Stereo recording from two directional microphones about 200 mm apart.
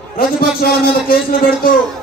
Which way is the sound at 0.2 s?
45° left (ahead or behind).